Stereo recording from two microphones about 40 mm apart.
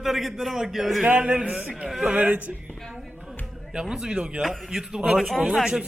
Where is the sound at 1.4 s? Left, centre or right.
Right.